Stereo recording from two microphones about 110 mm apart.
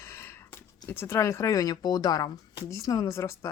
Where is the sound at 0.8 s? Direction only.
20° left (ahead or behind).